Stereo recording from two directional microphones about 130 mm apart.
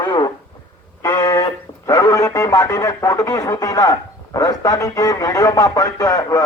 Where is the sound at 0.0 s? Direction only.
30° left (ahead or behind).